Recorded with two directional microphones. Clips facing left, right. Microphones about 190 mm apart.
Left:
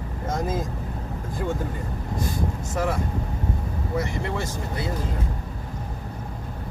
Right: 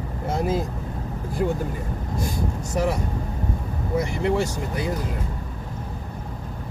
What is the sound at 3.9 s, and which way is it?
Speech, 20° right (ahead or behind).